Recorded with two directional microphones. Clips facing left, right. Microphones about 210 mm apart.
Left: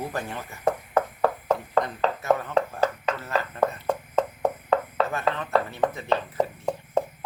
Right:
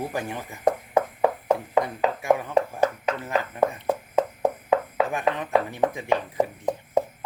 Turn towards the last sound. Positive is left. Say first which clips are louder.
# right 2 dB
turn(degrees=-15)  # may be behind; listen again after turning